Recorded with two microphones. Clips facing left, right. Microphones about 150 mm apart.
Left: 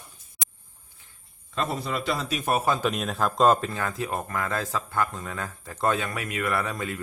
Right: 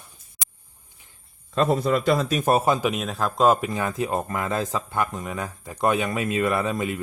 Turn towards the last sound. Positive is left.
turn(degrees=-20)  # may be behind; listen again after turning